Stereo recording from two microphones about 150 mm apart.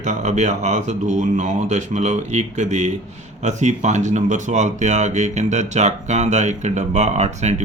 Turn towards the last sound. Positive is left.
turn(degrees=-50)  # may be behind; listen again after turning